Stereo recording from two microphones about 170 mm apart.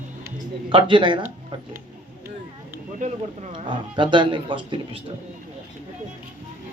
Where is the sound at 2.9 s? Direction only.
45° right (ahead or behind).